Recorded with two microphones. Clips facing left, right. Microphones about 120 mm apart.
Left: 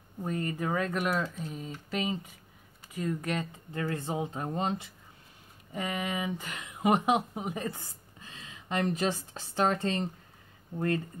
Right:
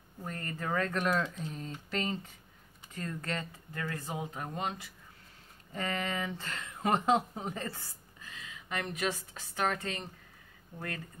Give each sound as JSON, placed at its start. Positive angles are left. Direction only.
{"t": 0.2, "sound": "speech", "side_deg": 15}
{"t": 3.8, "sound": "speech", "side_deg": 25}
{"t": 5.7, "sound": "speech", "side_deg": 10}